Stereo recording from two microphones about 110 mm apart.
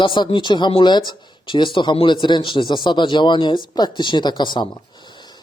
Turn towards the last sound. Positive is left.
turn(degrees=40)  # may be behind; listen again after turning